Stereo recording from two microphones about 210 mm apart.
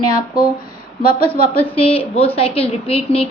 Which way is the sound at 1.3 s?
25° left (ahead or behind).